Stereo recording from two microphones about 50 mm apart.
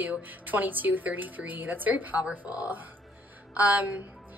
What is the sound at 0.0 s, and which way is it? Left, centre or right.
A woman's voice, right.